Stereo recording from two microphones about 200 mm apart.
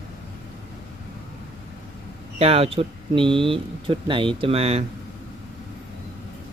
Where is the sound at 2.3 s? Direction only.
30° right (ahead or behind).